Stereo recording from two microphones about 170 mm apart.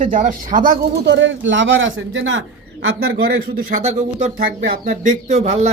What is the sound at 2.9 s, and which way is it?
Speech, 65° right (ahead or behind).